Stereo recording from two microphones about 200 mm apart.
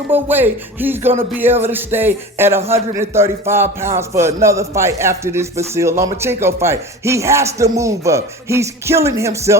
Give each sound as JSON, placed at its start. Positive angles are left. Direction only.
{"t": 0.1, "sound": "a man's voice", "side_deg": -10}